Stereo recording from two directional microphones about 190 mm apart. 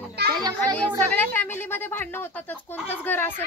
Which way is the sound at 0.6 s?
10° left (ahead or behind).